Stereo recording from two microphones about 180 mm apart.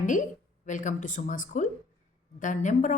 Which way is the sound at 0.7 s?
45° left (ahead or behind).